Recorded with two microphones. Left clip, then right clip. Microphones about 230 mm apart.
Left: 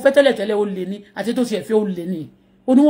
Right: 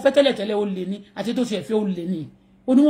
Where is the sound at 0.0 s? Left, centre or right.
Centre.